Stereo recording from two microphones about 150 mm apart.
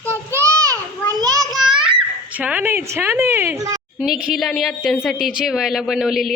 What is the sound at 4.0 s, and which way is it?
A woman's voice, 5° right (ahead or behind).